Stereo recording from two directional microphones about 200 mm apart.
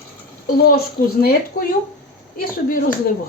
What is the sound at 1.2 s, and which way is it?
Speech, 45° left (ahead or behind).